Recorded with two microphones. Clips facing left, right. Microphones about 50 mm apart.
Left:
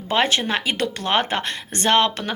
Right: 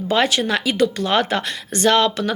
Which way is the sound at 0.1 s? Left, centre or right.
Left.